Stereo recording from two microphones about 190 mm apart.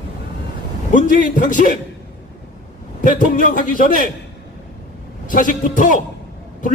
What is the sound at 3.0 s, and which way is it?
A man's voice, 45° left (ahead or behind).